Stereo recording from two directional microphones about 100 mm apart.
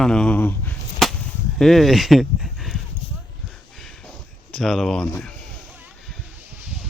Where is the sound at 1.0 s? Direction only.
Centre (ahead or behind).